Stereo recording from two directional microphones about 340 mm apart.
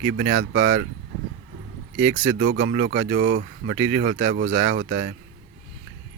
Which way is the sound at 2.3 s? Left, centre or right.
Right.